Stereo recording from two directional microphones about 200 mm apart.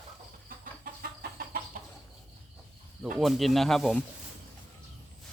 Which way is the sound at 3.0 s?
Centre (ahead or behind).